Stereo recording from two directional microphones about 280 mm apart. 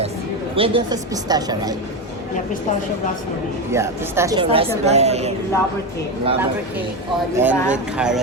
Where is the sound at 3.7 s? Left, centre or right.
Centre.